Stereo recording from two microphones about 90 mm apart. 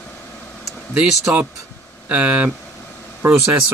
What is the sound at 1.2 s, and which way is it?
Speech, 15° right (ahead or behind).